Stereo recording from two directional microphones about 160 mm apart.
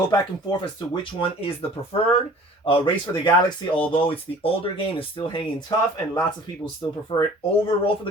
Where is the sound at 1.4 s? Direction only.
35° left (ahead or behind).